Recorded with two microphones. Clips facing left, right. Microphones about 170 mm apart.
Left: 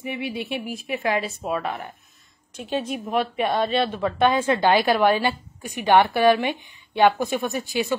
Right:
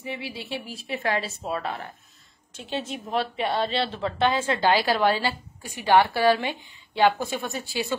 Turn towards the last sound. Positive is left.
turn(degrees=15)  # may be behind; listen again after turning